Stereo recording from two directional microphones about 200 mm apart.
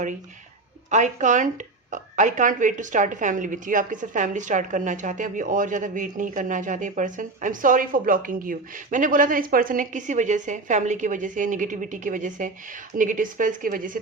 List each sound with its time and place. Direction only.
0.9 s speech: 35° right (ahead or behind)